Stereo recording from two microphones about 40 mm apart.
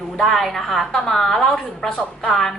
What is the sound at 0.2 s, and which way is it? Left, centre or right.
A woman's voice, centre.